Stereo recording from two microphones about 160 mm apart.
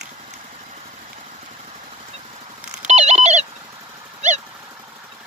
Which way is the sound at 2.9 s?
45° right (ahead or behind).